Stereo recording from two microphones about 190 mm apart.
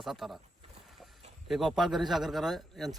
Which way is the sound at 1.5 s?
Centre (ahead or behind).